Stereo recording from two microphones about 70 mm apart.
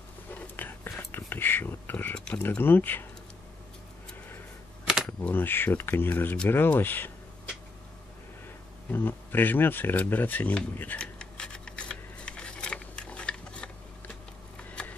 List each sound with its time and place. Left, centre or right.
0.3 s whispering: left
2.1 s a sound: centre
2.4 s speech: left
4.9 s computer keyboard: centre
5.3 s speech: left
8.9 s speech: left
11.0 s a sound: centre